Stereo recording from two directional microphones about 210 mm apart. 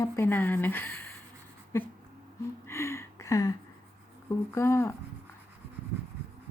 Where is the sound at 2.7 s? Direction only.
15° left (ahead or behind).